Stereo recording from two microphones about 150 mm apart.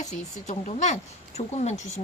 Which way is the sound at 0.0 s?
50° left (ahead or behind).